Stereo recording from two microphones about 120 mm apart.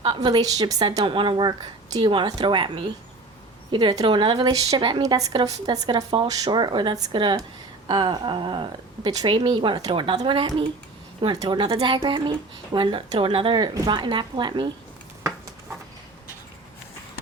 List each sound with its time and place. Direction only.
0.0 s a woman's voice: 40° right (ahead or behind)
5.0 s a woman's voice: 30° right (ahead or behind)